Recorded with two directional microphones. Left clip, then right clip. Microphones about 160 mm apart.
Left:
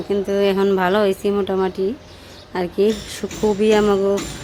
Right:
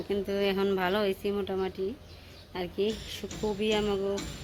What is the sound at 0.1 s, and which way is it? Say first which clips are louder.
Speech: left 11 dB; 15° left (ahead or behind).